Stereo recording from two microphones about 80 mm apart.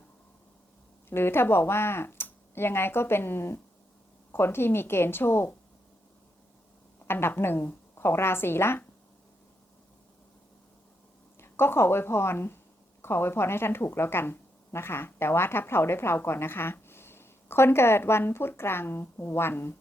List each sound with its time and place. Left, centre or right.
1.1 s speech: left
7.1 s a woman's voice: left
11.3 s a woman's voice: left